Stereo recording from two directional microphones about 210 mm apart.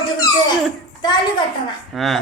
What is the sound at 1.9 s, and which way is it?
Speech, centre (ahead or behind).